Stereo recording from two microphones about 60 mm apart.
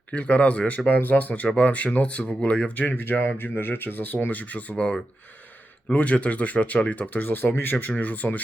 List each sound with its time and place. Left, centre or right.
0.1 s speech: left
0.9 s speech: left
2.7 s speech: left